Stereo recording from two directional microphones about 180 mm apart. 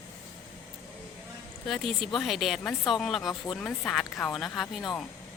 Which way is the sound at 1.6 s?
Centre (ahead or behind).